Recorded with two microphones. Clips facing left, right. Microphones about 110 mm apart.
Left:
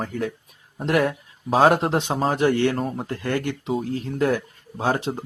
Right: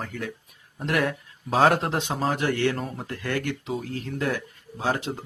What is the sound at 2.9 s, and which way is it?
Speech, 30° left (ahead or behind).